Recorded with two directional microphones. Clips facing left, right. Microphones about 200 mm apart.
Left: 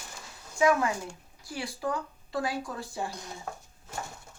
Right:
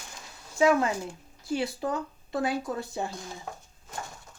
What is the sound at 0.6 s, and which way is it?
Speech, 25° right (ahead or behind).